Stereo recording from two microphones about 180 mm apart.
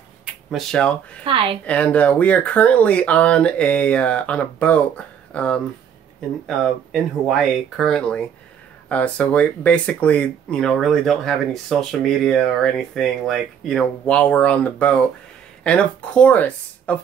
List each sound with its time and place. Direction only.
0.2 s a sound: centre (ahead or behind)
1.2 s speech: 30° right (ahead or behind)
1.7 s speech: 5° left (ahead or behind)